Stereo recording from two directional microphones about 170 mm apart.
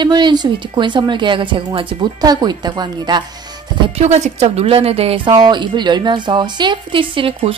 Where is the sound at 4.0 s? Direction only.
40° right (ahead or behind).